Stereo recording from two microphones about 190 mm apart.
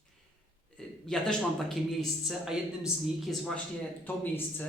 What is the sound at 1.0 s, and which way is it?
A man's voice, 5° left (ahead or behind).